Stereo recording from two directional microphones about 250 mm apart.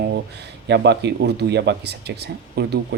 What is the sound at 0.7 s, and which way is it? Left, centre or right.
Speech, right.